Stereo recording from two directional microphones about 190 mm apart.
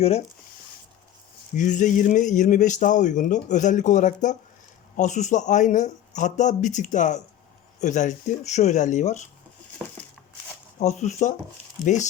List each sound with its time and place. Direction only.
1.5 s speech: 40° left (ahead or behind)
10.8 s speech: 35° left (ahead or behind)